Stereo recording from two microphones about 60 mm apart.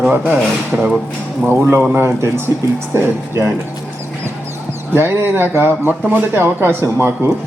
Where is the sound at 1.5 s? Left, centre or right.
Right.